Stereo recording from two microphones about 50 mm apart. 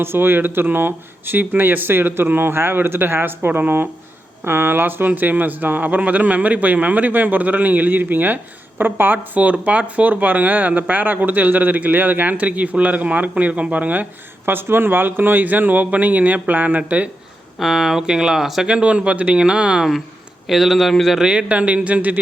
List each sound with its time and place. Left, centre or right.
0.0 s speech: right
14.4 s speech: right
17.6 s speech: centre
18.7 s speech: right
20.5 s a man's voice: centre
21.2 s speech: right